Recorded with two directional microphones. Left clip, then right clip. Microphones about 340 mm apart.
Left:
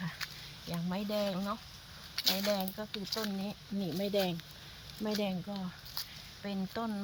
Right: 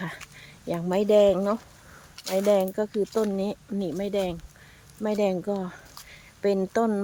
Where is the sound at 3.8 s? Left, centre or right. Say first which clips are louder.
Right 5 dB; centre.